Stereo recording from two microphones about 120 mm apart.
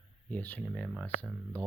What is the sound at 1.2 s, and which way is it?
Speech, 20° right (ahead or behind).